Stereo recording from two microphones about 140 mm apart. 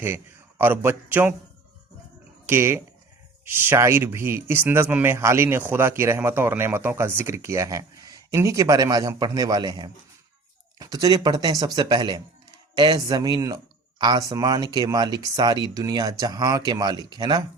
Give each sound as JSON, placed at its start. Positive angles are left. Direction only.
{"t": 0.6, "sound": "speech", "side_deg": -15}
{"t": 2.5, "sound": "speech", "side_deg": -20}